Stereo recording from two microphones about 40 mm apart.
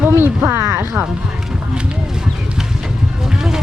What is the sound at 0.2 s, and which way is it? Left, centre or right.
Music, right.